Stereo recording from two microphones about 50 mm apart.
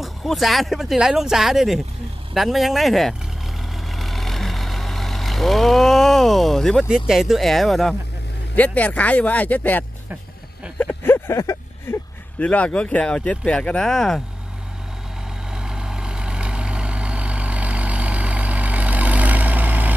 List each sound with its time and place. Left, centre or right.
0.0 s speech: centre
0.9 s speech: centre
3.9 s vehicle: centre
6.8 s speech: centre
8.5 s speech: left
11.1 s vehicle: left
11.9 s a sound: left
12.4 s speech: left
13.8 s speech: centre
15.5 s vehicle: centre; by 19.9 s right